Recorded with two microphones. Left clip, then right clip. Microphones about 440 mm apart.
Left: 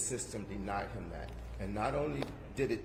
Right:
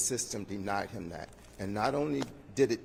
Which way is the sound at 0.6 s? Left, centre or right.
Right.